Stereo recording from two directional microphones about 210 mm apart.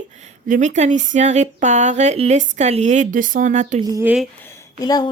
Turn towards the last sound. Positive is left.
turn(degrees=20)  # may be behind; listen again after turning